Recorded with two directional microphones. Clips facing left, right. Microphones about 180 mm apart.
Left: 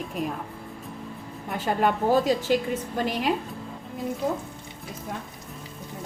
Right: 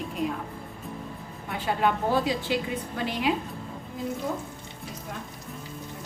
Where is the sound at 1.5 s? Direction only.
45° left (ahead or behind).